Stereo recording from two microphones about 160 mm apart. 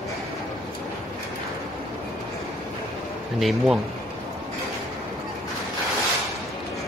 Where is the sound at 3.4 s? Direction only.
Centre (ahead or behind).